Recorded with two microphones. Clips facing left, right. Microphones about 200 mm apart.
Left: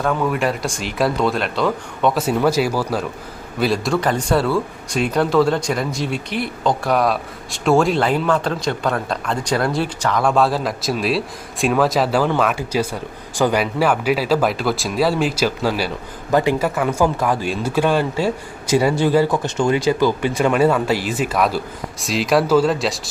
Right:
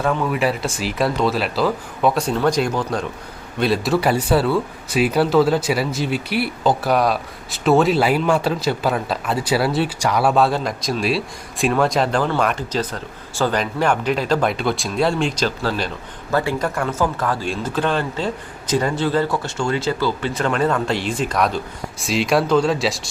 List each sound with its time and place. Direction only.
0.0 s speech: centre (ahead or behind)